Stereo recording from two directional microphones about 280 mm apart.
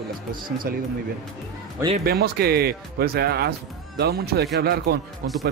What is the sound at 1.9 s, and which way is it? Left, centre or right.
A man's voice, right.